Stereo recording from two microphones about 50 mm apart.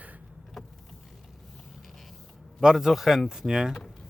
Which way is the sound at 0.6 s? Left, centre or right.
Centre.